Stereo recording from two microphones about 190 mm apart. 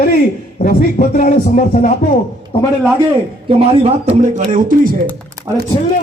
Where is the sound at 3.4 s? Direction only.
30° right (ahead or behind); by 5.0 s 45° right (ahead or behind).